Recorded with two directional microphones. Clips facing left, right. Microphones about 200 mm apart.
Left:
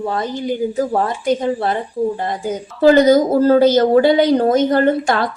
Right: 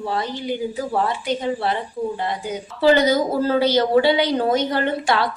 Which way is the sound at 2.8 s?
45° left (ahead or behind).